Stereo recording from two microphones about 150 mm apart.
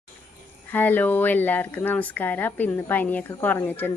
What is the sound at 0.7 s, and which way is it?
Speech, 15° left (ahead or behind).